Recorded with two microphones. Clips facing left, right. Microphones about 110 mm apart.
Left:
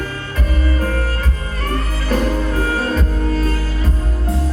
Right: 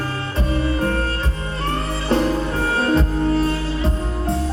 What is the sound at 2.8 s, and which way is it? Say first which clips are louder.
Music: right 2 dB; 25° right (ahead or behind).